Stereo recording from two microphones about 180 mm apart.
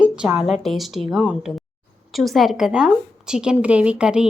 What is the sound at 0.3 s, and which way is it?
A woman's voice, centre (ahead or behind).